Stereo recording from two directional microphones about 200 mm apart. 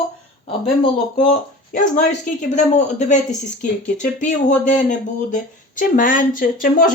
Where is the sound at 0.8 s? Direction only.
35° left (ahead or behind).